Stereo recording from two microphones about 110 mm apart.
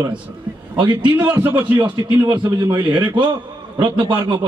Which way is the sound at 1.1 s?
15° right (ahead or behind).